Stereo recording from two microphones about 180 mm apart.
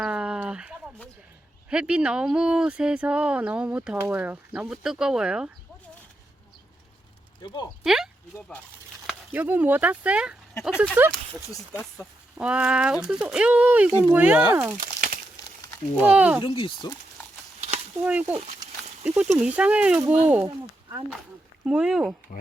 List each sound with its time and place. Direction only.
0.0 s a sound: 5° right (ahead or behind)
1.7 s speech: 5° right (ahead or behind)
7.9 s speech: centre (ahead or behind)
12.4 s speech: 5° right (ahead or behind)
14.8 s crumpling: 50° right (ahead or behind)
16.0 s speech: 10° right (ahead or behind)
16.4 s speech: 30° left (ahead or behind)
18.0 s speech: 10° right (ahead or behind)
21.7 s speech: 5° right (ahead or behind)